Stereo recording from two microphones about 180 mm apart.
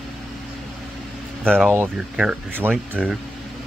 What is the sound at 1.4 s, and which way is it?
Speech, 5° left (ahead or behind).